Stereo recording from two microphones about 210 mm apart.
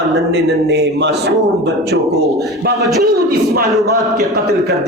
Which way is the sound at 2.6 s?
50° right (ahead or behind).